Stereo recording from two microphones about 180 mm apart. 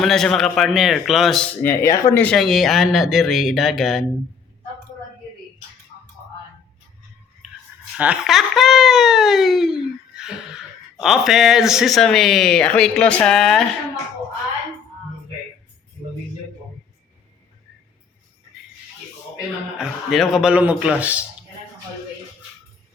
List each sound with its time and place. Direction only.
0.0 s speech: centre (ahead or behind)
1.6 s speech: 15° left (ahead or behind)
2.2 s speech: centre (ahead or behind)
7.9 s speech: 5° right (ahead or behind)
19.8 s a man's voice: centre (ahead or behind)